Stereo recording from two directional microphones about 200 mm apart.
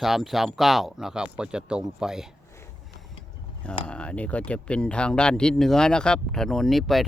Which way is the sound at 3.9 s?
5° left (ahead or behind).